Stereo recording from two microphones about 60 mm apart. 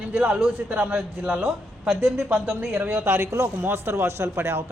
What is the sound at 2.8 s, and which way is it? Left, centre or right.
A man's voice, right.